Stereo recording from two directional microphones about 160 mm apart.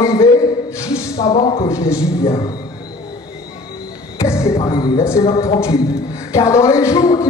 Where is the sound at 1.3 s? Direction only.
40° left (ahead or behind).